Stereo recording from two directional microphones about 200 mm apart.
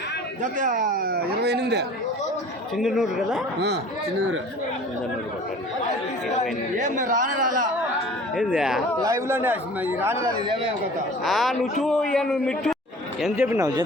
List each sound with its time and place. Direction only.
0.6 s speech: 40° right (ahead or behind)
2.7 s a man's voice: centre (ahead or behind)
6.7 s speech: 40° right (ahead or behind)
8.4 s a man's voice: 5° right (ahead or behind)
9.0 s a man's voice: 15° right (ahead or behind)
11.2 s a man's voice: centre (ahead or behind)
13.2 s a man's voice: 10° right (ahead or behind)